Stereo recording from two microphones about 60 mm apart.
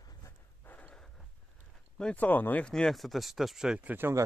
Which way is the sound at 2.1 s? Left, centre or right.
Left.